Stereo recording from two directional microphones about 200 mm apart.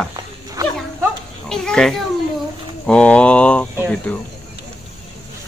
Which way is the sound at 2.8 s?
5° left (ahead or behind).